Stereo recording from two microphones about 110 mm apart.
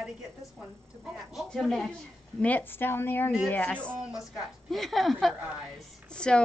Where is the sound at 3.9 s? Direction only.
5° right (ahead or behind).